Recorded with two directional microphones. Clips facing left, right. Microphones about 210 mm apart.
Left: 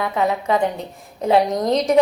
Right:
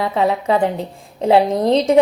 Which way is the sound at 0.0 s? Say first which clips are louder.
Right 3 dB; 30° right (ahead or behind).